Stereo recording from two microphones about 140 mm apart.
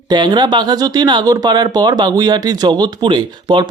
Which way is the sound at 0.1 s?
30° right (ahead or behind).